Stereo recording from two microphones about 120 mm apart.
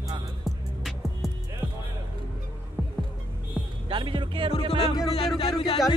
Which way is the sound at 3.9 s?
45° right (ahead or behind).